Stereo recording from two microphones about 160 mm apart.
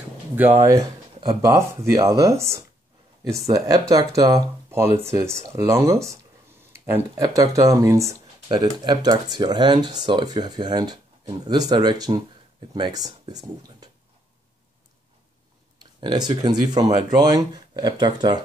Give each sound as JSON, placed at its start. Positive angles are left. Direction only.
{"t": 0.7, "sound": "speech", "side_deg": -20}
{"t": 15.8, "sound": "speech", "side_deg": -25}